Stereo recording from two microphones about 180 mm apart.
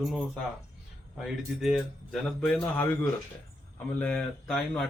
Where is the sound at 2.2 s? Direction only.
Centre (ahead or behind).